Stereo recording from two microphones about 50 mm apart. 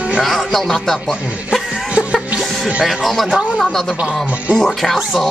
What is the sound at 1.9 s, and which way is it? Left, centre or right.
Music, right.